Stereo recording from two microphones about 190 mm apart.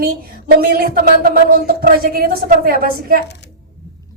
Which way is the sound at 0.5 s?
50° right (ahead or behind).